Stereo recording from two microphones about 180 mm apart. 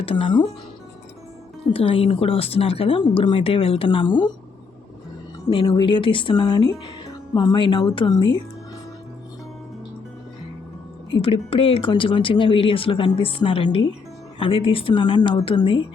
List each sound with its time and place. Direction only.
0.0 s speech: 30° left (ahead or behind)
1.7 s speech: 30° left (ahead or behind)
5.5 s speech: 25° left (ahead or behind)
11.1 s speech: 30° left (ahead or behind)